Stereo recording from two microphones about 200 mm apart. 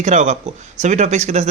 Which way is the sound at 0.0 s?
35° right (ahead or behind).